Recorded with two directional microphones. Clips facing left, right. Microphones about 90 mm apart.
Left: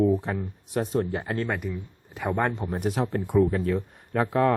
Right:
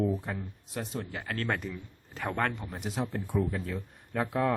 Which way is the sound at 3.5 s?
65° left (ahead or behind).